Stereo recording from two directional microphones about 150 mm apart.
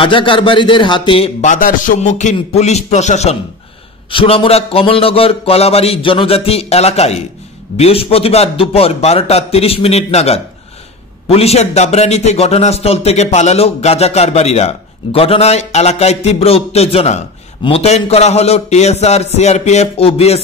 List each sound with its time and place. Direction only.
0.0 s a man's voice: 35° left (ahead or behind)
1.4 s a man's voice: 60° left (ahead or behind)
4.1 s a man's voice: 35° left (ahead or behind)